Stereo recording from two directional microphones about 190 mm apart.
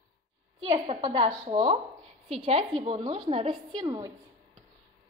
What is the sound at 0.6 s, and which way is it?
A woman's voice, 30° right (ahead or behind).